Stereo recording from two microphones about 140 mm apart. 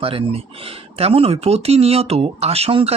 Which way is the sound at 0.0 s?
40° right (ahead or behind).